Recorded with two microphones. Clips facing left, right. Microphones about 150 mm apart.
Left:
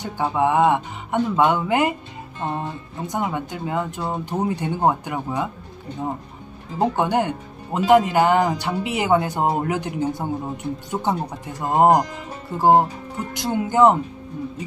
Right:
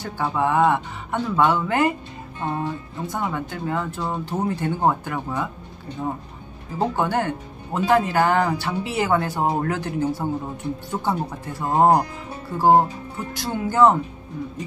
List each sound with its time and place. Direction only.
0.0 s speech: 15° left (ahead or behind)
3.1 s speech: 20° left (ahead or behind)
6.8 s speech: 15° left (ahead or behind)